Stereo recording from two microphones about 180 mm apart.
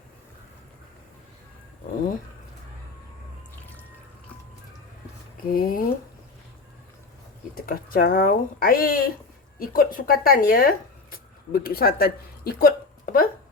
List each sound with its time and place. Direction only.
5.5 s speech: 55° left (ahead or behind)
7.5 s speech: 55° left (ahead or behind)